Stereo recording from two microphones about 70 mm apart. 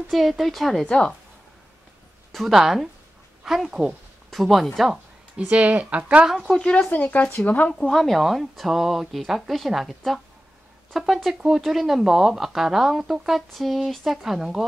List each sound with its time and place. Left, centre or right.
0.1 s speech: centre
2.3 s speech: centre
5.4 s speech: centre
6.2 s speech: centre
6.6 s speech: centre
7.7 s speech: centre